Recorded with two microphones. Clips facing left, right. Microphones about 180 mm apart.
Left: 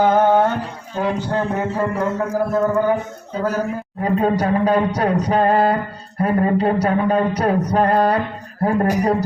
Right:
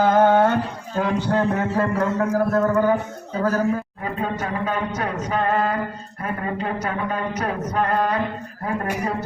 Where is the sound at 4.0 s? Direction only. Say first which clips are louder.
Left 8 dB; 40° left (ahead or behind).